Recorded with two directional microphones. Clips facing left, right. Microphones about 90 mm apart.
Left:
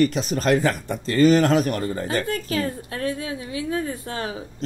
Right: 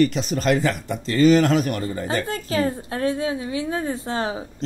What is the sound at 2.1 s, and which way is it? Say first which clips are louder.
A woman's voice: right 2 dB; 30° right (ahead or behind).